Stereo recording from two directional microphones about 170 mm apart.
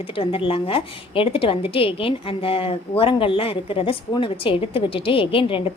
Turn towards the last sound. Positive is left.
turn(degrees=30)  # may be behind; listen again after turning